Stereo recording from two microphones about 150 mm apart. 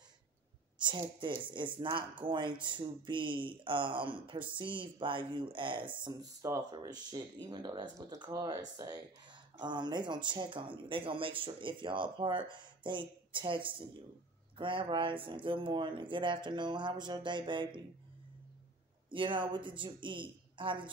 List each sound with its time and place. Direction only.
0.7 s a sound: 30° right (ahead or behind)
1.8 s speech: 35° right (ahead or behind)
19.0 s speech: 35° right (ahead or behind)